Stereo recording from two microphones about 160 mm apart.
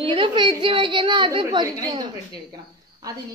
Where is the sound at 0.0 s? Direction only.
35° right (ahead or behind).